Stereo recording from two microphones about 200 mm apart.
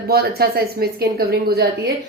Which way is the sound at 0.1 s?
50° right (ahead or behind).